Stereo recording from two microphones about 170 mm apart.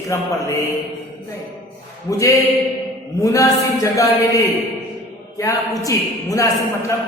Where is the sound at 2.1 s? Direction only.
20° left (ahead or behind).